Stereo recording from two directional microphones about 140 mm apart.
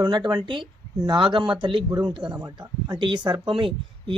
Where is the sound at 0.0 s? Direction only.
30° right (ahead or behind).